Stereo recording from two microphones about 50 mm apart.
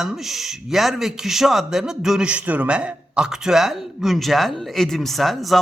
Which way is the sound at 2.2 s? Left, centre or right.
Right.